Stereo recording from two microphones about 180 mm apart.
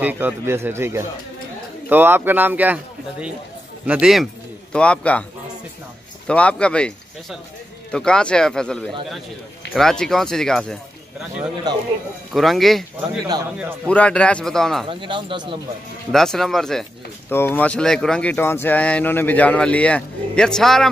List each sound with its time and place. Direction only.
0.0 s a man's voice: 10° right (ahead or behind); by 5.2 s 5° left (ahead or behind)
6.2 s speech: 5° left (ahead or behind)
11.7 s speech: 20° right (ahead or behind)
12.3 s speech: centre (ahead or behind)
13.8 s speech: 5° left (ahead or behind)
14.9 s speech: 25° right (ahead or behind)
16.1 s speech: centre (ahead or behind)